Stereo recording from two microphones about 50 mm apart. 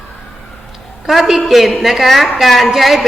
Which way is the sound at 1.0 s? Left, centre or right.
Centre.